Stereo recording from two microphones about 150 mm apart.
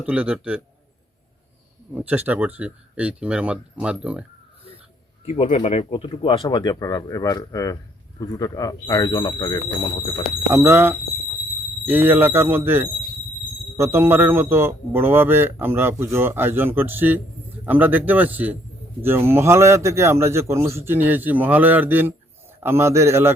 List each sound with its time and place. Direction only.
0.0 s speech: 10° right (ahead or behind)
2.0 s speech: 10° right (ahead or behind)
5.2 s speech: 45° left (ahead or behind); by 10.2 s 30° left (ahead or behind)
10.5 s speech: 15° right (ahead or behind)